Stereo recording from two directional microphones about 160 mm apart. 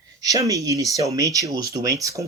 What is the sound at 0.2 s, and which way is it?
Speech, 20° right (ahead or behind).